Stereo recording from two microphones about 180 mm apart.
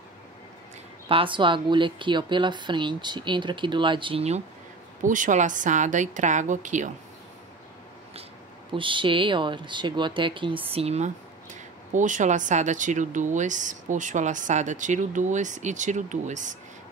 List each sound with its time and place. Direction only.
1.0 s a woman's voice: 30° right (ahead or behind)
5.0 s speech: 45° right (ahead or behind)
8.7 s a woman's voice: 30° right (ahead or behind); by 16.5 s 45° right (ahead or behind)